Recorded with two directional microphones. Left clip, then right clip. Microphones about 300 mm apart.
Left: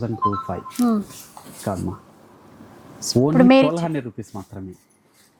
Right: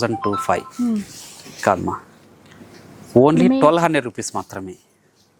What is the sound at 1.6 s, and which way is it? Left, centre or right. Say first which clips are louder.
Speech: right 10 dB; centre.